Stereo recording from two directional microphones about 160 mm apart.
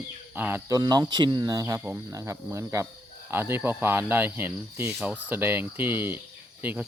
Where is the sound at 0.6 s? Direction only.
20° right (ahead or behind).